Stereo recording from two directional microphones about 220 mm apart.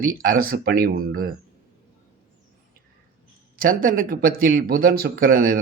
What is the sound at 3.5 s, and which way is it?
Speech, 40° right (ahead or behind).